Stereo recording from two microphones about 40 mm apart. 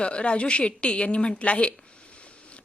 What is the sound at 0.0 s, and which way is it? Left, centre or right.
A woman's voice, left.